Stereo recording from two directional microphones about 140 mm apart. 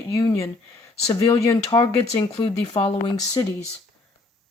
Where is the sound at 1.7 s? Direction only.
30° left (ahead or behind).